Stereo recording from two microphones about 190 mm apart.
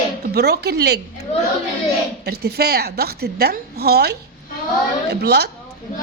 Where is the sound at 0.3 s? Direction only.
60° right (ahead or behind).